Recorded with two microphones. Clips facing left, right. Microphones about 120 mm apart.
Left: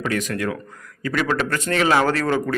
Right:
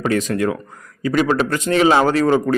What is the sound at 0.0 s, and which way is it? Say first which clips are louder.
A man's voice: right 5 dB; 30° right (ahead or behind).